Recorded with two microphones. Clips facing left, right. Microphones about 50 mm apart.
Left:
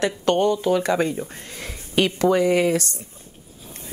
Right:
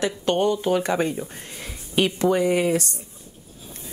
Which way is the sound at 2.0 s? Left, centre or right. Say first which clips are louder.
Left 1 dB; left.